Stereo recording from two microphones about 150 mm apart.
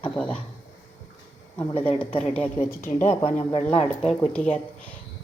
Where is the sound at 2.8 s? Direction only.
55° left (ahead or behind).